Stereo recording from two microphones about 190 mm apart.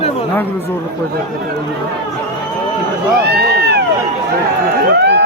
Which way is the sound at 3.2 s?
60° right (ahead or behind).